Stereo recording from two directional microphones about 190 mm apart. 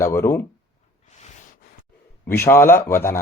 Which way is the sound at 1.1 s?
35° left (ahead or behind).